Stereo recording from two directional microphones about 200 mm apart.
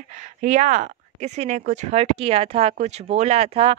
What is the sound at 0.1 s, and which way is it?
Speech, 40° right (ahead or behind).